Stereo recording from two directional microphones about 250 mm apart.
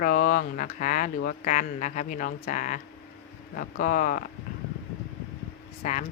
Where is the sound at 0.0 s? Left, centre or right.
Left.